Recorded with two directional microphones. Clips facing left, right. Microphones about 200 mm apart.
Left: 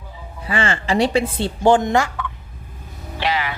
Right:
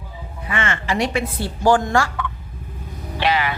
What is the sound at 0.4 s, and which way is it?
Speech, 30° left (ahead or behind).